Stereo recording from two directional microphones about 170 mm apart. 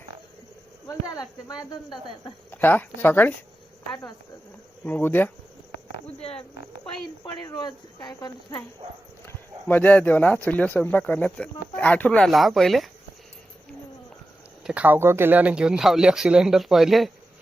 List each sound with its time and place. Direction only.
0.9 s speech: 20° left (ahead or behind)
2.5 s speech: 10° left (ahead or behind)
4.9 s speech: 10° left (ahead or behind)
7.3 s speech: 20° left (ahead or behind)
9.2 s speech: 10° left (ahead or behind)
14.6 s speech: 5° right (ahead or behind)